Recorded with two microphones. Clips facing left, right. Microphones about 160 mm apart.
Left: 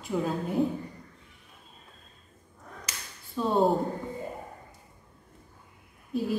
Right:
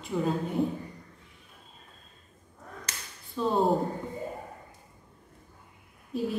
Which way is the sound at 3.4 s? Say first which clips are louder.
Even; centre (ahead or behind).